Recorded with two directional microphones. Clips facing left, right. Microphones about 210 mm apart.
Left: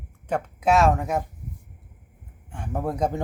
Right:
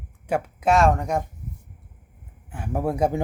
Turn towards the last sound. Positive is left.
turn(degrees=-10)  # may be behind; listen again after turning